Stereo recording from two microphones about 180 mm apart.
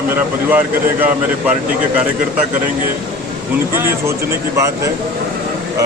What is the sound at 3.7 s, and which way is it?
Speech, 15° right (ahead or behind).